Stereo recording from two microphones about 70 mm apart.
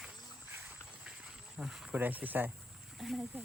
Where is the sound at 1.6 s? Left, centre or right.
Centre.